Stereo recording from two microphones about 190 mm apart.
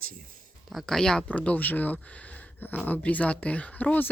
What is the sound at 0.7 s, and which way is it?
Speech, centre (ahead or behind).